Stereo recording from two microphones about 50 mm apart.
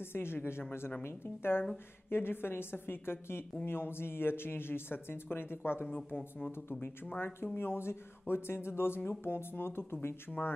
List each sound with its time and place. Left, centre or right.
0.0 s speech: left